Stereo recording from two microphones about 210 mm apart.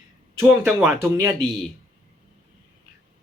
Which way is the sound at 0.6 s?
5° right (ahead or behind).